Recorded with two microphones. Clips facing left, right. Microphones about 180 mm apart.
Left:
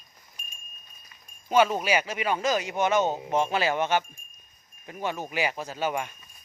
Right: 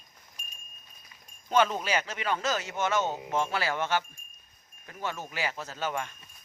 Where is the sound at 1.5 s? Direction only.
10° left (ahead or behind).